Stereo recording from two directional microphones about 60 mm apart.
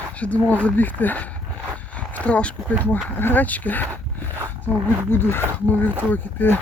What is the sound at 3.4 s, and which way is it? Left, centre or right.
Speech, left.